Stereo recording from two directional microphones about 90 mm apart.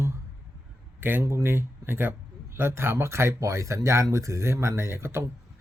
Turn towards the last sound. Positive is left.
turn(degrees=-30)  # may be behind; listen again after turning